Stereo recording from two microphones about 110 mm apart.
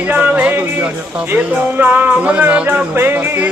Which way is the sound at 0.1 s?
15° right (ahead or behind).